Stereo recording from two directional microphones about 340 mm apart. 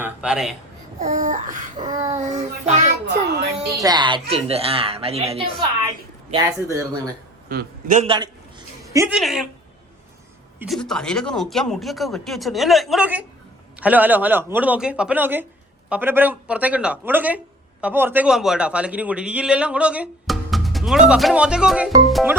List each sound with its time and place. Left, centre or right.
0.0 s a man's voice: centre
0.9 s a sound: right
3.7 s a woman's voice: centre
6.7 s a woman's voice: centre
7.5 s a man's voice: right; by 9.5 s centre
10.6 s speech: centre